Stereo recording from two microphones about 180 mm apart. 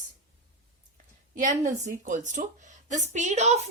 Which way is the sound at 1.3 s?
40° right (ahead or behind).